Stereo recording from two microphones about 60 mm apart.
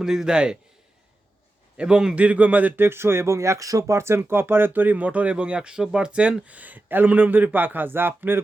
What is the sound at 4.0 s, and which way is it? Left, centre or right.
Speech, right.